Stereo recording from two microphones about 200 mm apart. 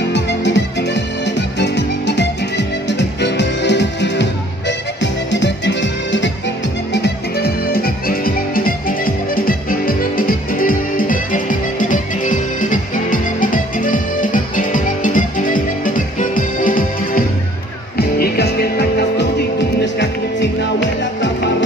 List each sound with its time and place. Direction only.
0.1 s music: 60° left (ahead or behind)
6.9 s music: 55° left (ahead or behind)